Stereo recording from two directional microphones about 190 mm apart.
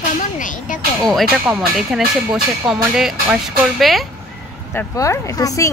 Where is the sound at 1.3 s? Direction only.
5° right (ahead or behind).